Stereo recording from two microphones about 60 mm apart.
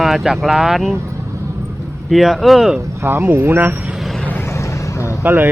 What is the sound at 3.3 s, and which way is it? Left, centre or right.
Speech, right.